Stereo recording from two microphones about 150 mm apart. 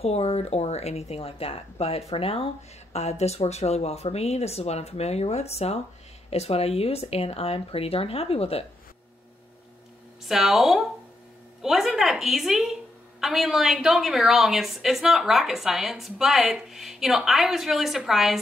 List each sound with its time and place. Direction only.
0.0 s speech: 45° left (ahead or behind)
10.2 s a woman's voice: centre (ahead or behind)